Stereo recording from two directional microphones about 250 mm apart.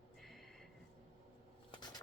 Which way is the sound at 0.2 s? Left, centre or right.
Centre.